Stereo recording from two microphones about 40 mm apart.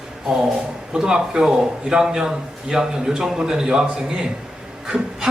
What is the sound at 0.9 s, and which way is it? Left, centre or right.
A man's voice, centre.